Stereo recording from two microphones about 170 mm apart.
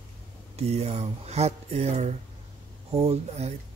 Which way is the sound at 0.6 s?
40° right (ahead or behind).